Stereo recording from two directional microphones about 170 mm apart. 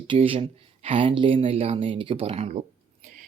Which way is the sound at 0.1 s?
35° right (ahead or behind).